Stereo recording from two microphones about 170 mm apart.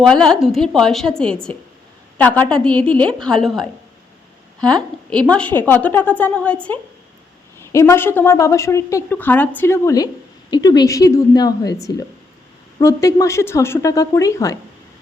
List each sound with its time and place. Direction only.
0.0 s a woman's voice: 5° left (ahead or behind)